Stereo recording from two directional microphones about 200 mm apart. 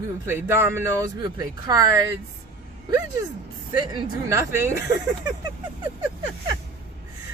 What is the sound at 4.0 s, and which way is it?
Speech, 15° right (ahead or behind).